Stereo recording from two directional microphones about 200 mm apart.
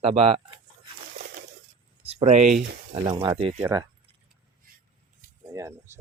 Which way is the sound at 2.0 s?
35° right (ahead or behind).